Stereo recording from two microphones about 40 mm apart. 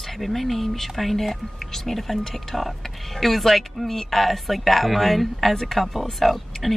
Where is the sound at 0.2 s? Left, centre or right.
Centre.